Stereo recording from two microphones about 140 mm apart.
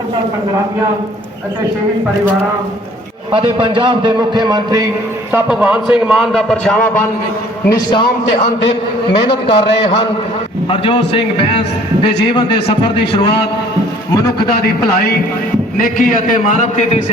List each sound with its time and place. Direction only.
3.3 s a man's voice: 35° right (ahead or behind)
5.3 s a man's voice: 10° right (ahead or behind)
7.7 s a man's voice: 30° left (ahead or behind)
9.1 s a man's voice: 40° left (ahead or behind)
15.8 s a man's voice: 70° left (ahead or behind)